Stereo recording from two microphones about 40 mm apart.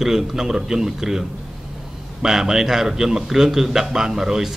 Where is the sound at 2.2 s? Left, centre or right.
Centre.